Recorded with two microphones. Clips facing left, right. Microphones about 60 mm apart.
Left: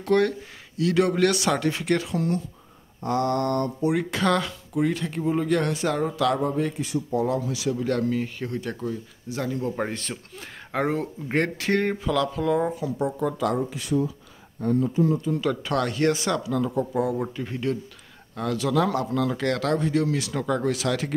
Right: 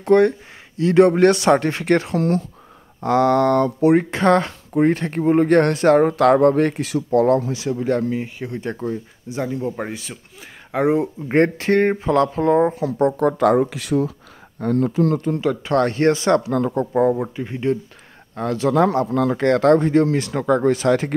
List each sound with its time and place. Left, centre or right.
0.0 s speech: right
3.0 s speech: right
3.9 s speech: right
7.4 s speech: right
9.3 s speech: right
9.8 s speech: centre
11.3 s speech: right
12.8 s speech: right
15.4 s speech: right
17.2 s speech: right